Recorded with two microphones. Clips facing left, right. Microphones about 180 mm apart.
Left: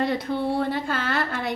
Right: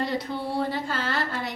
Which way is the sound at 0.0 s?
55° left (ahead or behind).